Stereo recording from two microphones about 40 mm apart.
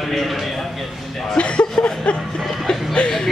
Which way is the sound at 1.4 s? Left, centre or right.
Left.